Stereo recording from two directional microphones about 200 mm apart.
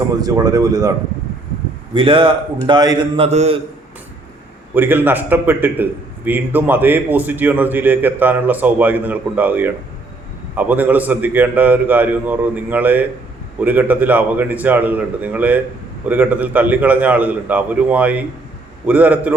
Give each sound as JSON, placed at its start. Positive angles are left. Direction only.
{"t": 0.2, "sound": "a man's voice", "side_deg": -20}
{"t": 4.7, "sound": "a man's voice", "side_deg": -10}